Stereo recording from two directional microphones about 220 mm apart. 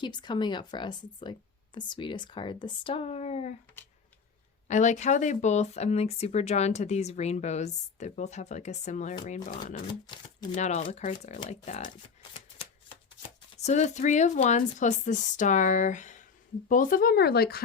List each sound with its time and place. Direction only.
0.0 s speech: 20° left (ahead or behind)
4.7 s speech: 35° left (ahead or behind)
9.8 s speech: 20° left (ahead or behind)
10.5 s speech: 30° left (ahead or behind)
13.6 s speech: 30° left (ahead or behind)